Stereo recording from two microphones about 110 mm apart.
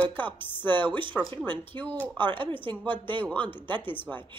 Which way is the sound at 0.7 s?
45° right (ahead or behind).